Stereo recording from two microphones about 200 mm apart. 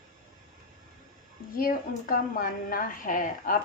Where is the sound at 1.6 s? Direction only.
45° left (ahead or behind).